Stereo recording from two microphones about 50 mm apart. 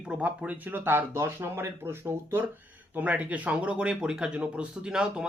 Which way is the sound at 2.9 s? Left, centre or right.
Right.